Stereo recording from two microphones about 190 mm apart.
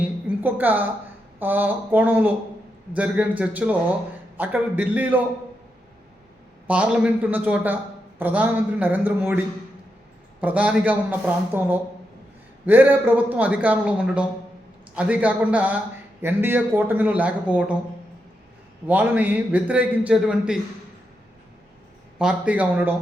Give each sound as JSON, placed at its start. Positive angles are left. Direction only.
{"t": 0.0, "sound": "a sound", "side_deg": -10}
{"t": 1.4, "sound": "a man's voice", "side_deg": -10}
{"t": 6.7, "sound": "a man's voice", "side_deg": -5}
{"t": 10.4, "sound": "a man's voice", "side_deg": -5}
{"t": 18.9, "sound": "a man's voice", "side_deg": -10}
{"t": 22.2, "sound": "a man's voice", "side_deg": -5}